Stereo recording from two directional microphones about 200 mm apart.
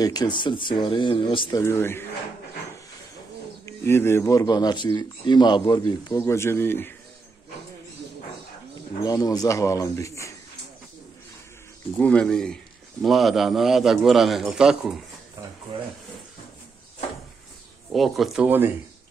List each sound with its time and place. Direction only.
0.0 s speech: 20° left (ahead or behind)
1.6 s speech: 10° left (ahead or behind)
3.6 s speech: 10° left (ahead or behind)
9.0 s speech: 20° left (ahead or behind)
12.0 s a man's voice: 5° left (ahead or behind)
17.9 s a man's voice: centre (ahead or behind)